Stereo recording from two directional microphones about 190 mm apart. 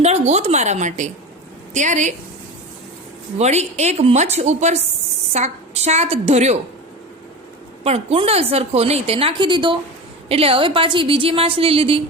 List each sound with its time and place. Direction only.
0.0 s a woman's voice: 35° right (ahead or behind)
3.3 s a woman's voice: 35° right (ahead or behind)
7.9 s a woman's voice: 30° right (ahead or behind)